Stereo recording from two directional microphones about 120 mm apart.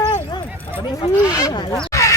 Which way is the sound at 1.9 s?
25° left (ahead or behind).